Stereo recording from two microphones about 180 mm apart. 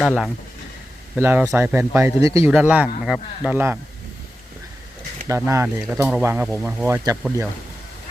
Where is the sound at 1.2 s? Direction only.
15° right (ahead or behind).